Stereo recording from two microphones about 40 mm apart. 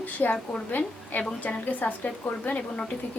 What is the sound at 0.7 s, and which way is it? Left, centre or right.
A woman's voice, left.